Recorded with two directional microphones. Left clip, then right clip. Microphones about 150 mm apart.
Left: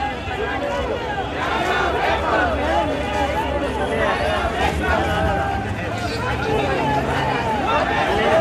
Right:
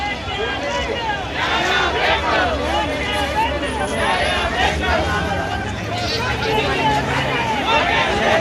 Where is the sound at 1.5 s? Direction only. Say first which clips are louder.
Right 3 dB; 90° left.